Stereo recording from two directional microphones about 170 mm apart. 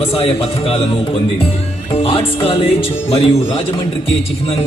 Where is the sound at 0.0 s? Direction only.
35° left (ahead or behind).